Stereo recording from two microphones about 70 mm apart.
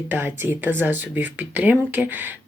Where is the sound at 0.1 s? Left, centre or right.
Right.